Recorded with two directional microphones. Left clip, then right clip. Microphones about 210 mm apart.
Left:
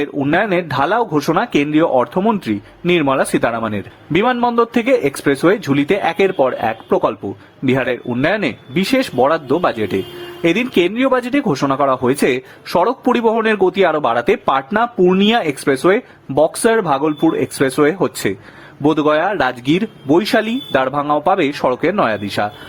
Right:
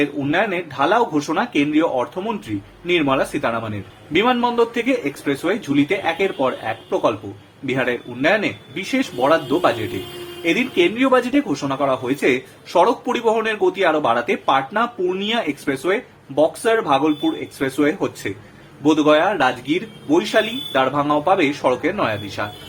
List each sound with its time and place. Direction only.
0.0 s speech: 50° left (ahead or behind)